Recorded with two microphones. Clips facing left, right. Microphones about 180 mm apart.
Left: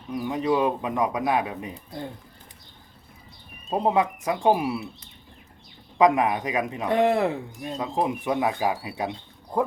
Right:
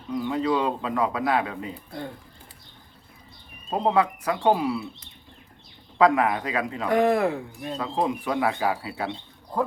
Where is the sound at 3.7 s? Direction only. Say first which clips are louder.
Even; 15° left (ahead or behind).